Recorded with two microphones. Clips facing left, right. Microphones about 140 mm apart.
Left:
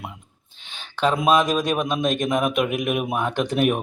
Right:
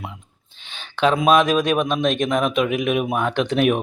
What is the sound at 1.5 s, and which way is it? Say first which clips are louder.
Speech: right 3 dB; 5° left (ahead or behind).